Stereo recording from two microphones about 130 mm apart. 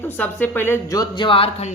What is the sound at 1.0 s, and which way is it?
Speech, 40° left (ahead or behind).